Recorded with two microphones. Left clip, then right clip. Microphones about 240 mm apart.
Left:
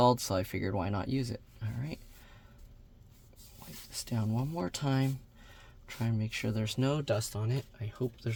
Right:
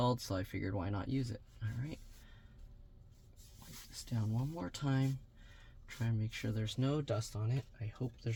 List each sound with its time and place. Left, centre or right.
0.0 s speech: left
3.9 s speech: left